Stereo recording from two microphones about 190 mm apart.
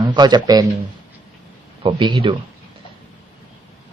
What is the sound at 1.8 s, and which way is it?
Speech, 25° right (ahead or behind).